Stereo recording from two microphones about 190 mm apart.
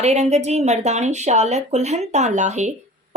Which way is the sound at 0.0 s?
35° right (ahead or behind).